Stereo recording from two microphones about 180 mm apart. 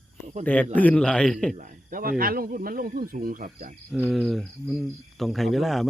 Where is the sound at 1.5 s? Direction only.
45° right (ahead or behind).